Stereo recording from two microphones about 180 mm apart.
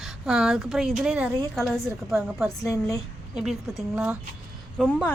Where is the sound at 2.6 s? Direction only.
15° left (ahead or behind).